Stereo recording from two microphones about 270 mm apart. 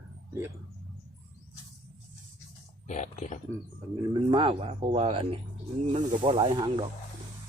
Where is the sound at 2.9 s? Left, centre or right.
Left.